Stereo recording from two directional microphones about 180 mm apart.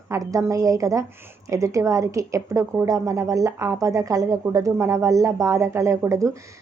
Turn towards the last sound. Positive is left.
turn(degrees=-15)  # may be behind; listen again after turning